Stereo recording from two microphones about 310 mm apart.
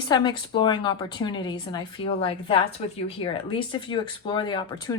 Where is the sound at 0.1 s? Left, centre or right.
Centre.